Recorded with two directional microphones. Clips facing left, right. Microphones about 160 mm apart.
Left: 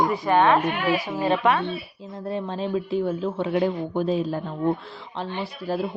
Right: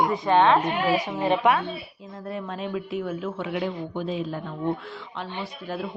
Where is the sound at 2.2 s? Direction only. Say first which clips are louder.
Left 4 dB; 30° left (ahead or behind).